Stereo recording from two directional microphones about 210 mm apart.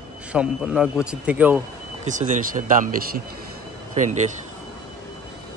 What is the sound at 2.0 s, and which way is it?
Speech, 35° right (ahead or behind).